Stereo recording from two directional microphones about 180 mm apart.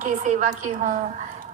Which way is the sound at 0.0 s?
45° right (ahead or behind).